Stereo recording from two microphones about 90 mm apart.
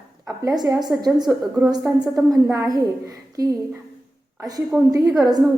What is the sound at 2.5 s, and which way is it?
Speech, 40° right (ahead or behind).